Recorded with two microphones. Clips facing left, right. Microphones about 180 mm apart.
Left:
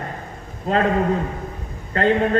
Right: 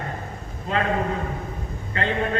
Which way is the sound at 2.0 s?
40° left (ahead or behind).